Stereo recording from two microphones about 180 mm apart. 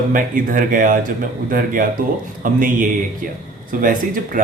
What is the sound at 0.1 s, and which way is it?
Speech, 50° right (ahead or behind).